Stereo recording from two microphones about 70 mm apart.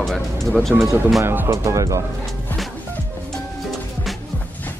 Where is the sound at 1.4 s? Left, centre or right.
Right.